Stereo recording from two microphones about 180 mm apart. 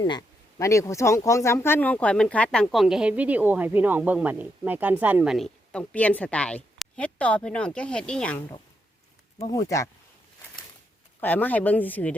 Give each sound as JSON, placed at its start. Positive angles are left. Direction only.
{"t": 0.0, "sound": "speech", "side_deg": 20}
{"t": 11.2, "sound": "speech", "side_deg": 10}